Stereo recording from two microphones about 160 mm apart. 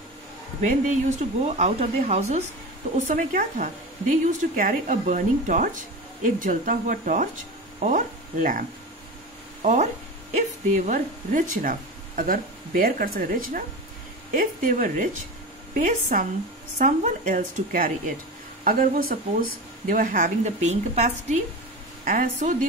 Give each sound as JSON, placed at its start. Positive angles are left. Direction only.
{"t": 0.6, "sound": "speech", "side_deg": -50}
{"t": 3.1, "sound": "speech", "side_deg": -55}
{"t": 22.0, "sound": "speech", "side_deg": -60}